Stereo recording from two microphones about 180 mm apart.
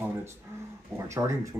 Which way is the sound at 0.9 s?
15° right (ahead or behind).